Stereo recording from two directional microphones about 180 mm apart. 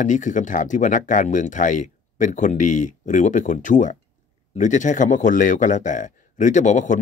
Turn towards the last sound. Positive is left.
turn(degrees=45)  # may be behind; listen again after turning